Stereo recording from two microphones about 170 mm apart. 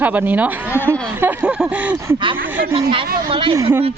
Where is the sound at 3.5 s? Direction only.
15° right (ahead or behind).